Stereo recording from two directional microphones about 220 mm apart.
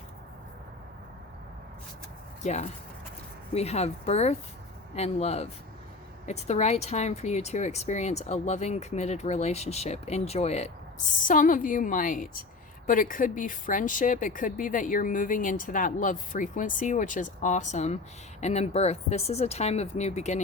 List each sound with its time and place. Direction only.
2.4 s speech: 30° left (ahead or behind)